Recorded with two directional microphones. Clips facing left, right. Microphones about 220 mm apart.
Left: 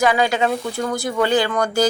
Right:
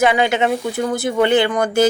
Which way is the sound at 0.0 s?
25° right (ahead or behind).